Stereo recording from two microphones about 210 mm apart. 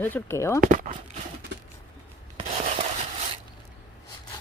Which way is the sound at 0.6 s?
40° right (ahead or behind).